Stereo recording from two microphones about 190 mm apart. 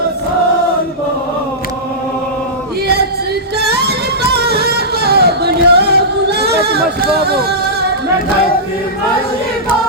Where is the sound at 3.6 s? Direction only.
60° right (ahead or behind).